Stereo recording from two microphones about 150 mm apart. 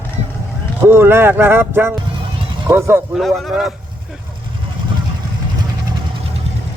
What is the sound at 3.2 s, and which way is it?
Speech, centre (ahead or behind).